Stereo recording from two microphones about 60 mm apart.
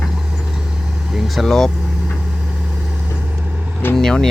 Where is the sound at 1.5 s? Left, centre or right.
Centre.